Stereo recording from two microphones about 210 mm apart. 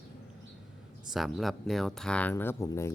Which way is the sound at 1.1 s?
Centre (ahead or behind).